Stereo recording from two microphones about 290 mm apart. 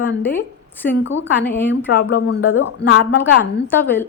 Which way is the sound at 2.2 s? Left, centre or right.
Left.